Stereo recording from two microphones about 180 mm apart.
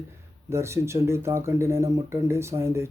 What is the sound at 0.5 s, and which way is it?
Speech, 15° right (ahead or behind).